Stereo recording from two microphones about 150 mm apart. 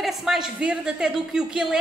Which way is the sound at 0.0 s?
5° right (ahead or behind).